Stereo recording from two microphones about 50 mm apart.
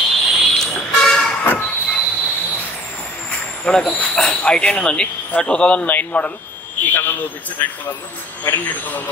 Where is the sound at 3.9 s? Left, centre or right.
Left.